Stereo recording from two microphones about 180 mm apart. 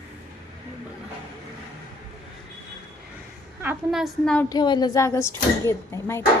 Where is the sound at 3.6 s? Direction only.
5° right (ahead or behind).